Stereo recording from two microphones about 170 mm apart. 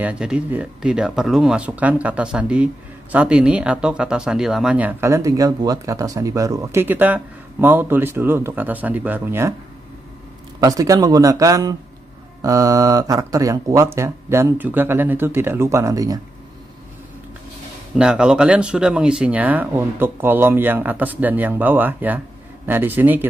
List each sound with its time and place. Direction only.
0.0 s speech: 5° right (ahead or behind)
10.6 s speech: 20° right (ahead or behind)
17.9 s speech: 5° right (ahead or behind)